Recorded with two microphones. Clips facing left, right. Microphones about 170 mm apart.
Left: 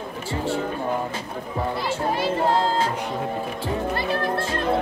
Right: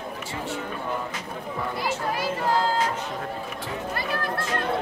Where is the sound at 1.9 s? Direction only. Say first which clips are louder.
Left 3 dB; 25° left (ahead or behind).